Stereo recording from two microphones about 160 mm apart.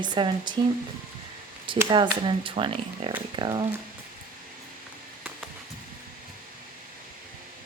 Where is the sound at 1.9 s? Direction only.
30° right (ahead or behind).